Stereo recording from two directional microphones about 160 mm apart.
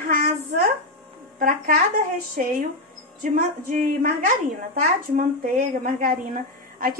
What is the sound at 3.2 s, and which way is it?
Music, 50° right (ahead or behind).